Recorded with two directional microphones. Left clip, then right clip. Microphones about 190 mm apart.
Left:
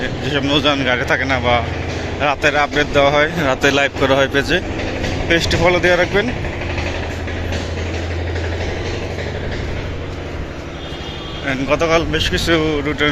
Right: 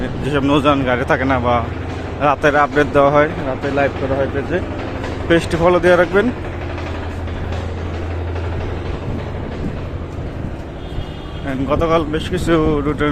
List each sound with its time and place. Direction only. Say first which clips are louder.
0.3 s speech: right 1 dB; 20° right (ahead or behind)
3.8 s speech: left 3 dB; 5° left (ahead or behind)
5.3 s speech: right 1 dB; 15° right (ahead or behind)
11.4 s speech: left 1 dB; 15° right (ahead or behind)